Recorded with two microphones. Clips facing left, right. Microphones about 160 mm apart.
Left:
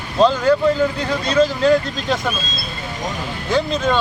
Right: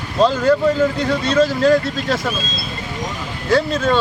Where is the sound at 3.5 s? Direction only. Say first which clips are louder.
Right 2 dB; 15° left (ahead or behind).